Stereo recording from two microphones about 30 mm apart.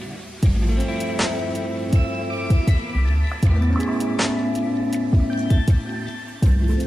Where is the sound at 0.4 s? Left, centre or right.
Centre.